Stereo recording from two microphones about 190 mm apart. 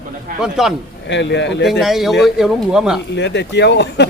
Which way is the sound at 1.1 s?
65° left (ahead or behind).